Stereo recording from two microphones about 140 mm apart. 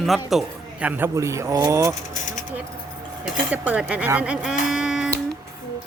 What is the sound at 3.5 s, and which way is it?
A man's voice, 10° right (ahead or behind).